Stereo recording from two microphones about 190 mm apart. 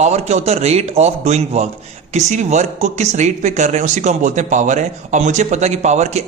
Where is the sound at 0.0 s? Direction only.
35° right (ahead or behind).